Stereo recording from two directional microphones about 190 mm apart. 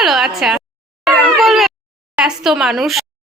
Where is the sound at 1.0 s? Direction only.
Centre (ahead or behind).